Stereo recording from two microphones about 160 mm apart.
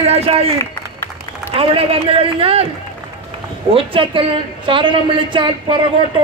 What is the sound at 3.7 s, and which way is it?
A man's voice, 35° right (ahead or behind).